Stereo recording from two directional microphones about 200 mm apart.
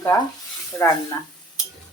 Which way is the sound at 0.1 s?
15° left (ahead or behind).